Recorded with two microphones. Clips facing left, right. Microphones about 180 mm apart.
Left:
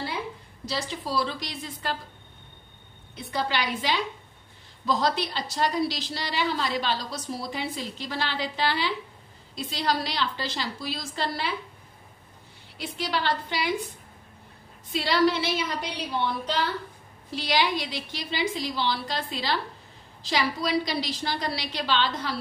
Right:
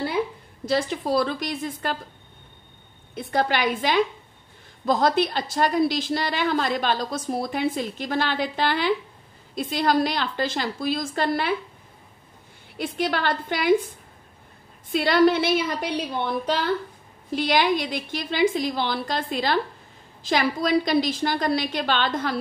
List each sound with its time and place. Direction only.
0.7 s a woman's voice: 50° right (ahead or behind)
3.2 s a woman's voice: 50° right (ahead or behind)
12.7 s a woman's voice: 50° right (ahead or behind)